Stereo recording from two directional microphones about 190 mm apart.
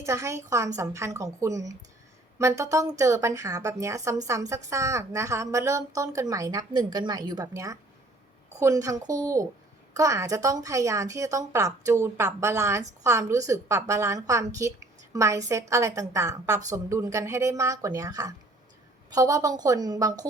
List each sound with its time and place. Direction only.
0.0 s a woman's voice: 15° right (ahead or behind)